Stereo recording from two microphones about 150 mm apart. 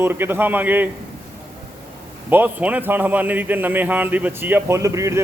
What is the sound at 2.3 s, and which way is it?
A man's voice, 10° right (ahead or behind).